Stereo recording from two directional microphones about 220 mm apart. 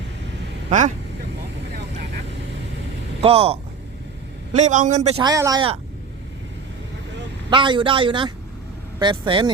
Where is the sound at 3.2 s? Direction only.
25° right (ahead or behind).